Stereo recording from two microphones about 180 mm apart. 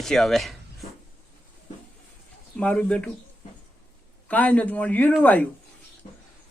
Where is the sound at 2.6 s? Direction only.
5° left (ahead or behind).